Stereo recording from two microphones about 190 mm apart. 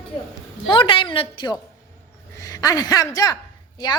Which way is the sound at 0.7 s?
25° left (ahead or behind).